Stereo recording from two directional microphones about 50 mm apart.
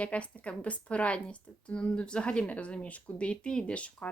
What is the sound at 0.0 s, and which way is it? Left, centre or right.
Speech, left.